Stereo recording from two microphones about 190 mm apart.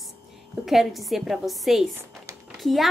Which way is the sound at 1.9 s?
15° right (ahead or behind).